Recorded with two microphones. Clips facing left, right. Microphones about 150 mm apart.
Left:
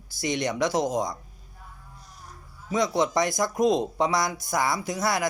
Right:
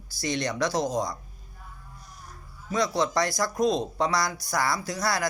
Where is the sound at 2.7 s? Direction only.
20° left (ahead or behind).